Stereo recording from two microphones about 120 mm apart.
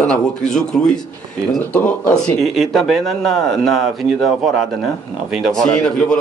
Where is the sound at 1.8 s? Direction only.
15° left (ahead or behind).